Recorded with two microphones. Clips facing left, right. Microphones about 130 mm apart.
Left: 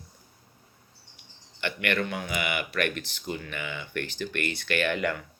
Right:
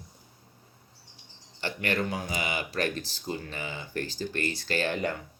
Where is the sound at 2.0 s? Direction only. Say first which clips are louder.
Even; 35° right (ahead or behind).